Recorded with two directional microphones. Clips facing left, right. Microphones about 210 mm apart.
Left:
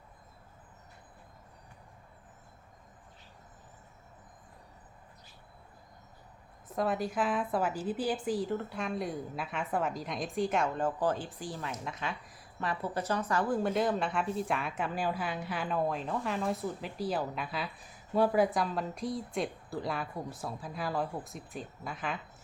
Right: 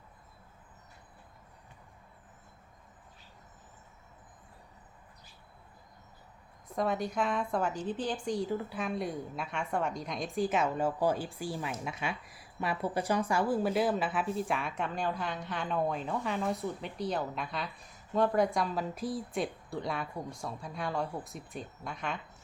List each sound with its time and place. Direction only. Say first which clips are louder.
6.7 s a woman's voice: even; centre (ahead or behind)